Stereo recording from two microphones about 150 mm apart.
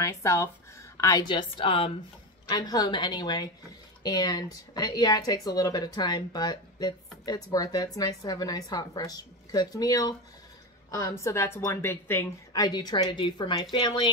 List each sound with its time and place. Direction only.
0.0 s a woman's voice: 20° left (ahead or behind)
12.5 s speech: 25° left (ahead or behind)